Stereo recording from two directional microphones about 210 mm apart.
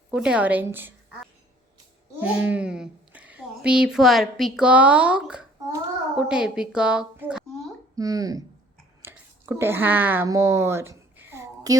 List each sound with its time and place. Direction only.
0.1 s a woman's voice: 5° right (ahead or behind)
2.2 s a woman's voice: 5° right (ahead or behind)
7.9 s a woman's voice: 15° right (ahead or behind)
9.0 s a sound: 10° right (ahead or behind)